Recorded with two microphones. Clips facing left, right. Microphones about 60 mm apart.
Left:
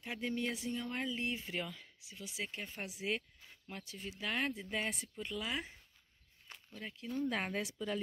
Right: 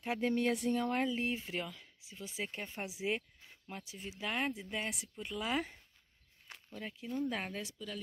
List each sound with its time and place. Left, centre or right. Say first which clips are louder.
0.0 s speech: right 6 dB; right
1.1 s speech: right 3 dB; right
1.6 s speech: even; centre
2.0 s speech: right 2 dB; right; by 4.6 s centre
4.6 s speech: left 1 dB; centre
6.7 s speech: right 1 dB; centre
7.6 s a woman's voice: left 5 dB; left